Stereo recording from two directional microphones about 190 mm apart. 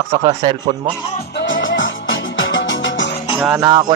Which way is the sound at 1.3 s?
75° left (ahead or behind).